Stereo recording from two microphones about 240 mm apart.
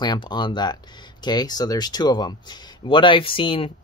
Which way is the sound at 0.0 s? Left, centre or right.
Centre.